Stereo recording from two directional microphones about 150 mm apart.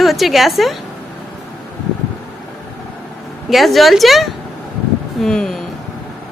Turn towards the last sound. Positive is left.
turn(degrees=5)  # may be behind; listen again after turning